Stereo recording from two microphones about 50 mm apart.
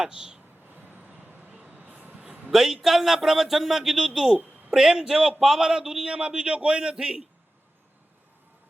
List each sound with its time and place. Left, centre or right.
0.0 s speech: centre
0.7 s vehicle: right
1.5 s vehicle: centre
1.8 s vehicle: right
2.5 s a man's voice: centre